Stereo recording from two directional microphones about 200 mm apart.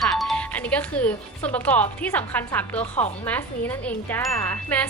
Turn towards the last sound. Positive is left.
turn(degrees=10)  # may be behind; listen again after turning